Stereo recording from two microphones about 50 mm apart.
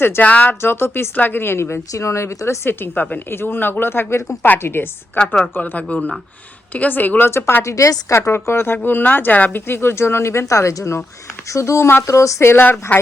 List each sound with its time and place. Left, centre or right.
0.2 s speech: left
0.6 s speech: left
1.1 s a woman's voice: left
2.9 s speech: left
3.2 s speech: left
5.6 s speech: left
7.3 s a woman's voice: left
7.6 s speech: left
9.5 s speech: left
10.3 s speech: left
12.0 s speech: left